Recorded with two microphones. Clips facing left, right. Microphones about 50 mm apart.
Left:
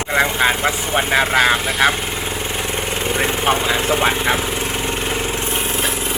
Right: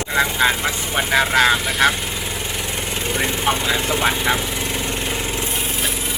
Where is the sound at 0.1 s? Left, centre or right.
Centre.